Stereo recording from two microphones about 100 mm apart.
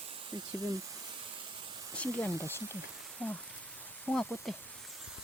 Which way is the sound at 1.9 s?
20° left (ahead or behind).